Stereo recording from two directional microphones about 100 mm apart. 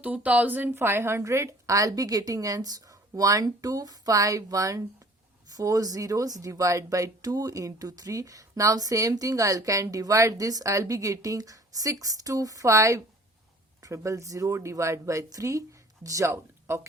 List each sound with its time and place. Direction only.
0.0 s speech: 15° right (ahead or behind)